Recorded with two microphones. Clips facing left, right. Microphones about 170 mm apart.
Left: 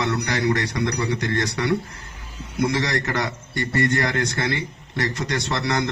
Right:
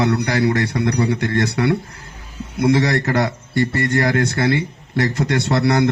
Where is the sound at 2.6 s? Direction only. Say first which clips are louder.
Right 6 dB; 55° right (ahead or behind).